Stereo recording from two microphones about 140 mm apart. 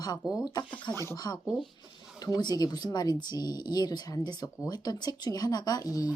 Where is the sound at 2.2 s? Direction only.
30° left (ahead or behind).